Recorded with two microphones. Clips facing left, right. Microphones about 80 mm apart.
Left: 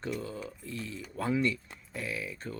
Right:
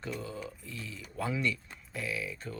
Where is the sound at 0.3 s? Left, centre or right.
Left.